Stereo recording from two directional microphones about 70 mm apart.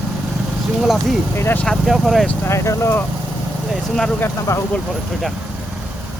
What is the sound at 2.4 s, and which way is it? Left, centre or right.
Speech, left.